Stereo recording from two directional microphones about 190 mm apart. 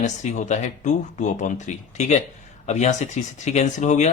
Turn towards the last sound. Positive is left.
turn(degrees=40)  # may be behind; listen again after turning